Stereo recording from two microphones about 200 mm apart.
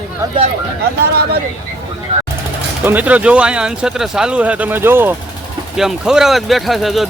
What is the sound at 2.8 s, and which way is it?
Speech, 10° right (ahead or behind).